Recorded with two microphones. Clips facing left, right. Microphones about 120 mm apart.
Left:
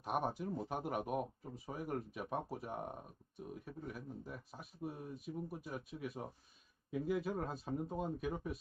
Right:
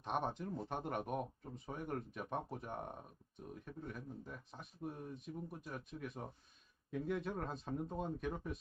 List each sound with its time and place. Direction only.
0.0 s speech: 5° left (ahead or behind)